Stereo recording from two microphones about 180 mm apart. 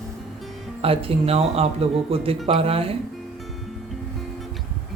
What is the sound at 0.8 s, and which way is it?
Speech, 30° right (ahead or behind).